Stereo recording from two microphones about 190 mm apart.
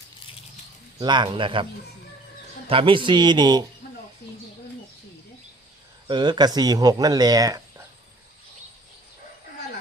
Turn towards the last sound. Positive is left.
turn(degrees=-20)  # may be behind; listen again after turning